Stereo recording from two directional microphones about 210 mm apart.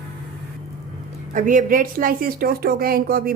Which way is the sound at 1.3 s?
40° right (ahead or behind).